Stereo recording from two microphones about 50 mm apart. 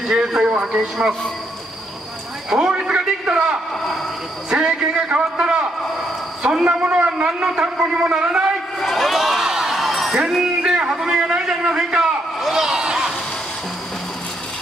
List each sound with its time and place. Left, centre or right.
0.1 s speech: centre
0.5 s a sound: centre
0.7 s a man's voice: centre
2.5 s a man's voice: centre
5.8 s train: centre
6.6 s a man's voice: right
8.7 s crowd: centre
10.1 s a man's voice: centre
12.4 s a sound: centre